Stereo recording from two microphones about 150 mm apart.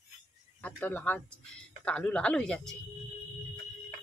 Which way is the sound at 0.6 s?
10° left (ahead or behind).